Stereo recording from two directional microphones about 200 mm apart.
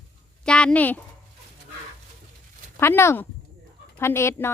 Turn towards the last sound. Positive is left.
turn(degrees=10)  # may be behind; listen again after turning